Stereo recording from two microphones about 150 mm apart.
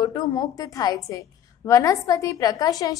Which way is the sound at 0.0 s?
25° left (ahead or behind).